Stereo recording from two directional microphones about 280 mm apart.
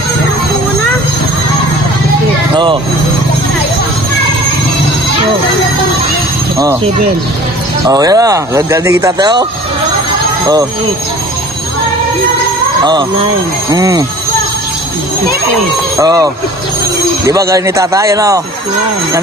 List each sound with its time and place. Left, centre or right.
2.5 s speech: centre
7.8 s speech: centre
12.8 s speech: centre
16.0 s speech: centre
17.3 s speech: centre